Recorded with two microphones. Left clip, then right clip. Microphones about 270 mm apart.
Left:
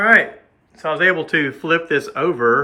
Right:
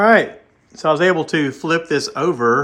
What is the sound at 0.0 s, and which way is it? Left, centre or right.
Speech, centre.